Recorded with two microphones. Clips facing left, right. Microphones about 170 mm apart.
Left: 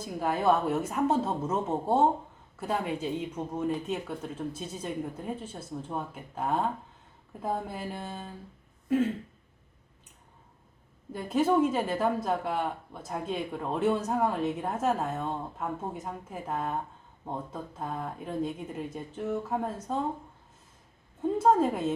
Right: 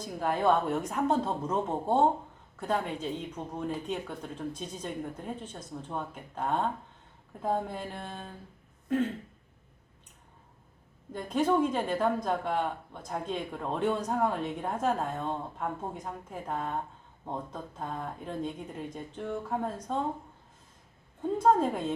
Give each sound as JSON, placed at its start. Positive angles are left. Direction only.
{"t": 0.0, "sound": "speech", "side_deg": 5}
{"t": 11.1, "sound": "speech", "side_deg": 5}
{"t": 21.3, "sound": "speech", "side_deg": 5}